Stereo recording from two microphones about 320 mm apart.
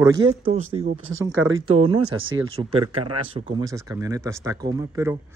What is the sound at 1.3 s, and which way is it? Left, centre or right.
Speech, right.